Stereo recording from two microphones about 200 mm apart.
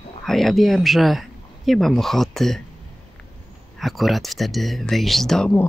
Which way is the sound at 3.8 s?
Centre (ahead or behind).